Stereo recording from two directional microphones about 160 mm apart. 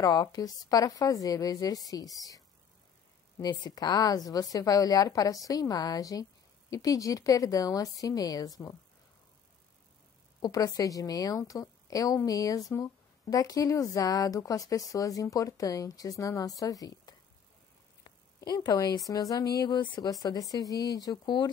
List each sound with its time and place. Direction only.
0.0 s speech: 25° left (ahead or behind)
10.4 s speech: 25° left (ahead or behind)
18.0 s a sound: 25° left (ahead or behind)
19.0 s speech: 20° left (ahead or behind)